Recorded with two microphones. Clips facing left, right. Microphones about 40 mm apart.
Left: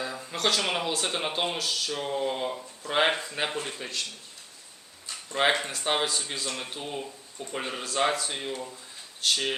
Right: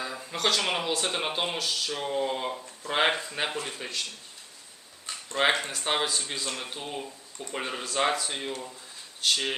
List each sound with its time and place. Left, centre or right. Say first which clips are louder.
0.0 s speech: even; centre
5.1 s a sound: right 2 dB; right
5.5 s speech: left 1 dB; centre